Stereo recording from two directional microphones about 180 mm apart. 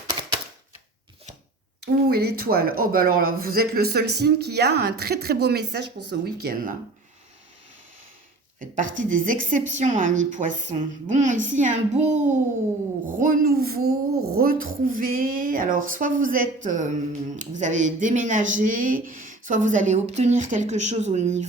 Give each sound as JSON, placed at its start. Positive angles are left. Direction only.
{"t": 1.8, "sound": "speech", "side_deg": -60}
{"t": 8.5, "sound": "a sound", "side_deg": -45}
{"t": 9.0, "sound": "speech", "side_deg": -45}